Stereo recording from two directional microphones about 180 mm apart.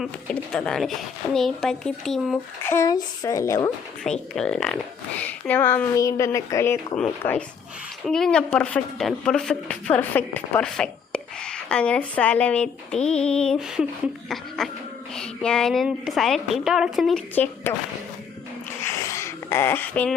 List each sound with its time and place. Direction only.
0.3 s a woman's voice: 5° left (ahead or behind)
2.6 s speech: 15° left (ahead or behind)
4.0 s speech: 5° left (ahead or behind)
8.0 s a woman's voice: 5° left (ahead or behind)
18.9 s a sound: 15° left (ahead or behind)